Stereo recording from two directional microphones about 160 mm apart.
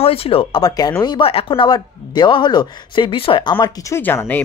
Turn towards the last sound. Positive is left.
turn(degrees=15)  # may be behind; listen again after turning